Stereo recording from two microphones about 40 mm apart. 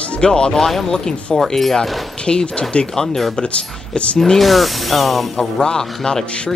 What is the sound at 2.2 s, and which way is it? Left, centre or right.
Speech, left.